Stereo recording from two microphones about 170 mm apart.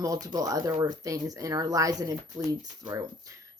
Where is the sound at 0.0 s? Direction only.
20° right (ahead or behind).